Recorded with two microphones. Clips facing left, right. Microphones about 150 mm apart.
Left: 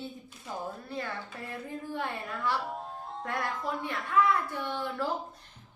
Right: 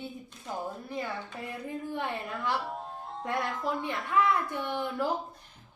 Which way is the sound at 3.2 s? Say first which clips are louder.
Right 2 dB; 20° right (ahead or behind).